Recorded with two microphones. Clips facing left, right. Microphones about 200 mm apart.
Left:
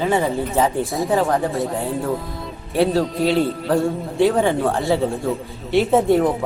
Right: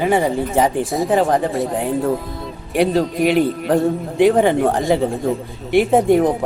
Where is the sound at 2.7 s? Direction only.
15° right (ahead or behind).